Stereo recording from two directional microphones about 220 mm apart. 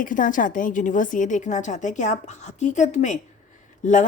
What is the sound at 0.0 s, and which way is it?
A woman's voice, 35° left (ahead or behind).